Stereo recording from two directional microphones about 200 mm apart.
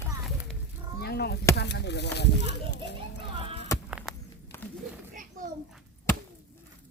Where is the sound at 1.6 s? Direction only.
60° left (ahead or behind).